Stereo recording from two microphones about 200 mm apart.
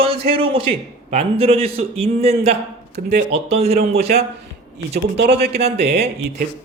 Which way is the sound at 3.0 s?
50° right (ahead or behind).